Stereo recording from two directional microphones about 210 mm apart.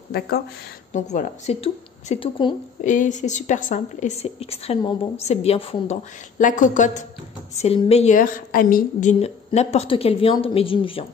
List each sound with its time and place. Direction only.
0.1 s a woman's voice: 45° left (ahead or behind); by 2.5 s 25° left (ahead or behind)
2.8 s a woman's voice: 35° left (ahead or behind)
9.2 s speech: 30° left (ahead or behind)